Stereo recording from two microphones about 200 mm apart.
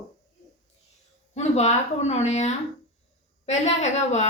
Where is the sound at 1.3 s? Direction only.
35° left (ahead or behind).